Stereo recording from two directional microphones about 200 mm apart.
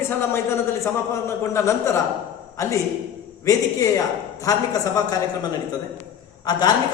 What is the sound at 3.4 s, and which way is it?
A man's voice, 15° left (ahead or behind).